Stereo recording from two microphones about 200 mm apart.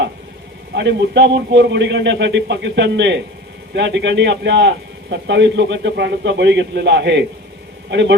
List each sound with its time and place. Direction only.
0.7 s a man's voice: 60° right (ahead or behind)